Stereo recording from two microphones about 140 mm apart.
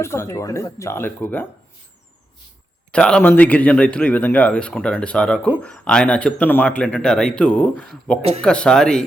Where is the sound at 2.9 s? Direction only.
5° left (ahead or behind).